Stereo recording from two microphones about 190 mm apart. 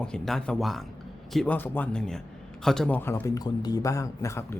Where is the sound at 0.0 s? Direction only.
5° left (ahead or behind).